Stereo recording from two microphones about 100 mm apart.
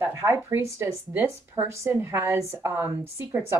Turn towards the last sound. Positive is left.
turn(degrees=-20)  # may be behind; listen again after turning